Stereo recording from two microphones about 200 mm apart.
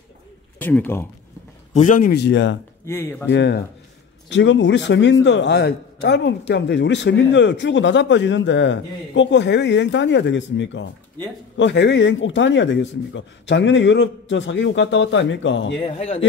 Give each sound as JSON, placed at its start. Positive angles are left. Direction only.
{"t": 0.6, "sound": "speech", "side_deg": 10}
{"t": 1.7, "sound": "speech", "side_deg": 40}
{"t": 2.8, "sound": "speech", "side_deg": 10}
{"t": 3.3, "sound": "a man's voice", "side_deg": 60}
{"t": 15.8, "sound": "speech", "side_deg": 30}